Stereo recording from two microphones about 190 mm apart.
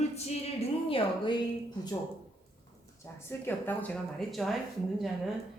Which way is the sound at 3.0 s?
10° left (ahead or behind).